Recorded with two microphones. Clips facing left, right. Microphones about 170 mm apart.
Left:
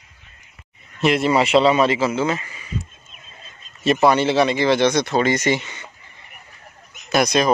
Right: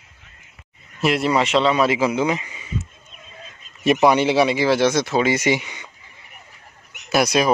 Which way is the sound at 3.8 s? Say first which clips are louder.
Even; 15° right (ahead or behind).